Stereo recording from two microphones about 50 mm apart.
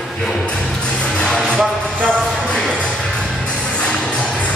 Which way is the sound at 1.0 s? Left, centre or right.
Left.